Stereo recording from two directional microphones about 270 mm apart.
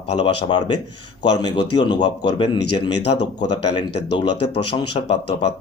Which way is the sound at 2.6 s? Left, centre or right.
Left.